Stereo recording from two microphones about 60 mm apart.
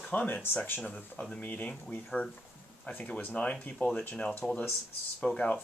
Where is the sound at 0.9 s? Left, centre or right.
Centre.